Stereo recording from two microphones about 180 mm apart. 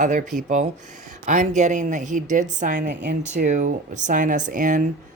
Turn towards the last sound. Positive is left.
turn(degrees=-45)  # may be behind; listen again after turning